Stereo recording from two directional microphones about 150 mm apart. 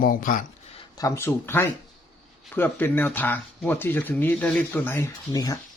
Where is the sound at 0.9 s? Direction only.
20° left (ahead or behind).